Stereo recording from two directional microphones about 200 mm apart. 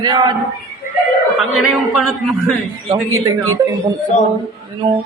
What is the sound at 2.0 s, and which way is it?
Speech, centre (ahead or behind).